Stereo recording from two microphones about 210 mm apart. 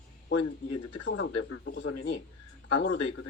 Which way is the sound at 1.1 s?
65° left (ahead or behind).